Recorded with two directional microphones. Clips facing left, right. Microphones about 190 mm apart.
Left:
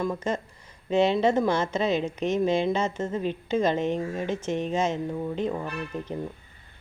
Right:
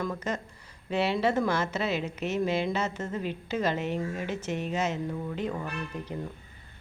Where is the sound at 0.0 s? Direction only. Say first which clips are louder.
Left 4 dB; 25° left (ahead or behind).